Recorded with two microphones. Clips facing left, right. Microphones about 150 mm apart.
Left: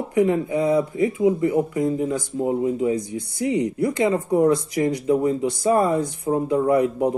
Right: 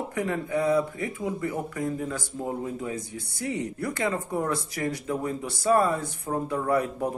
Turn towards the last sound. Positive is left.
turn(degrees=15)  # may be behind; listen again after turning